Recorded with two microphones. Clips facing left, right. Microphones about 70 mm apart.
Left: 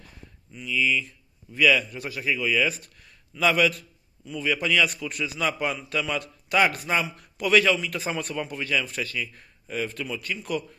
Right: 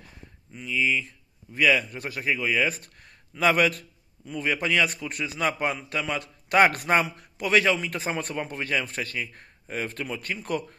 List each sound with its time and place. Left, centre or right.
0.5 s speech: right
6.7 s speech: right
7.2 s speech: right